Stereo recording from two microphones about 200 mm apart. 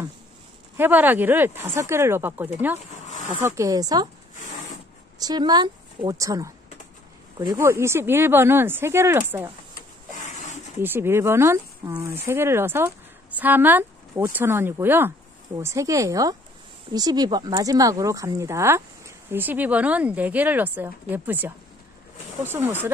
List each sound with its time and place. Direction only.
0.7 s speech: 10° right (ahead or behind)
5.2 s a woman's voice: 20° right (ahead or behind)
9.8 s printer: 40° left (ahead or behind)
10.8 s speech: 10° right (ahead or behind)